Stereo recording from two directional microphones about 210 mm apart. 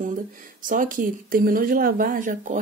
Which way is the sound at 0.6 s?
40° right (ahead or behind).